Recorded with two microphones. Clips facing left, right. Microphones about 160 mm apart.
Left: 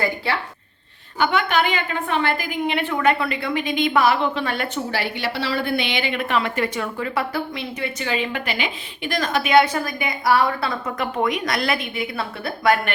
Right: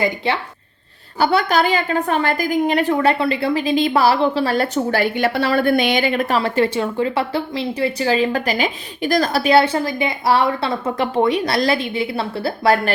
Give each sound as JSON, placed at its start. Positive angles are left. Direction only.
{"t": 0.3, "sound": "speech", "side_deg": -20}
{"t": 1.2, "sound": "a woman's voice", "side_deg": -35}